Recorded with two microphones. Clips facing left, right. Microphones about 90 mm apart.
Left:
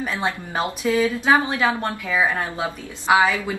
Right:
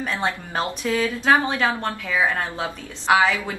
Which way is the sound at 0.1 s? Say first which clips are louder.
Even; 15° left (ahead or behind).